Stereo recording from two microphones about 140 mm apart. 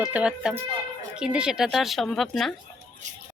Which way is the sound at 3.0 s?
60° right (ahead or behind).